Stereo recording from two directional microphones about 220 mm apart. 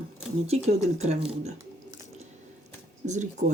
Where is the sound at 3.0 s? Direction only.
35° right (ahead or behind).